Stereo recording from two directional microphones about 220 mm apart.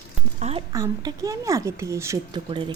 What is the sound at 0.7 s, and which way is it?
Speech, 15° right (ahead or behind).